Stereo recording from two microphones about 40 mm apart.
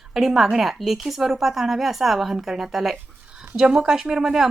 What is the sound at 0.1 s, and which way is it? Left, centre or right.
A woman's voice, centre.